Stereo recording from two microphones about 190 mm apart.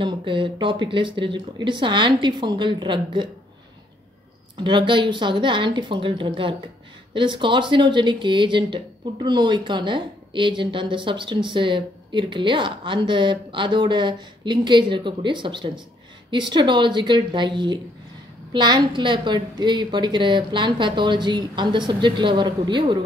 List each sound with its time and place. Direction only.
0.0 s speech: 25° right (ahead or behind)
4.6 s speech: 25° right (ahead or behind)